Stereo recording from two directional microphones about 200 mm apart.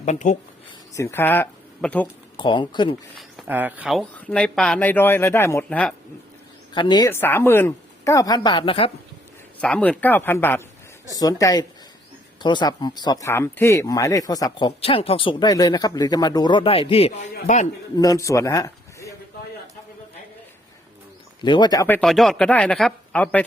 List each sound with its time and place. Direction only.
0.0 s speech: 35° left (ahead or behind)
0.9 s speech: 10° left (ahead or behind)
2.4 s speech: 25° left (ahead or behind)
3.2 s speech: 5° right (ahead or behind)
6.7 s speech: 20° left (ahead or behind)
9.6 s speech: 5° left (ahead or behind); by 17.7 s 40° left (ahead or behind)
17.9 s speech: 20° left (ahead or behind)
21.4 s speech: 20° left (ahead or behind)